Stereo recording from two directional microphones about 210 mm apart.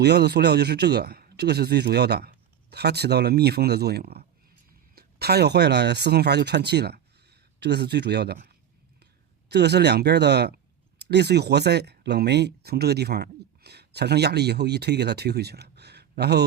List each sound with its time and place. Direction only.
0.0 s a man's voice: 50° right (ahead or behind)